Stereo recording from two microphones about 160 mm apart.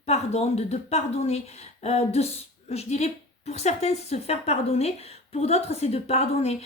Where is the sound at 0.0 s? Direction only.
40° left (ahead or behind).